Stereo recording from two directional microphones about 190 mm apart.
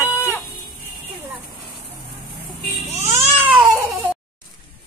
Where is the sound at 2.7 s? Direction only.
35° right (ahead or behind).